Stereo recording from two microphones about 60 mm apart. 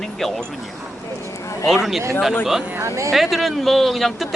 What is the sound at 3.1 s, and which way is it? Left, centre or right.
Speech, centre.